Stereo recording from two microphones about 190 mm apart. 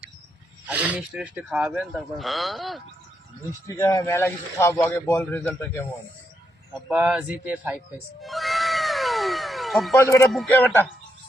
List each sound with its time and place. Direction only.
0.7 s speech: 10° right (ahead or behind)
3.7 s a man's voice: 15° left (ahead or behind)
6.7 s music: 5° right (ahead or behind)
9.9 s a man's voice: 15° left (ahead or behind)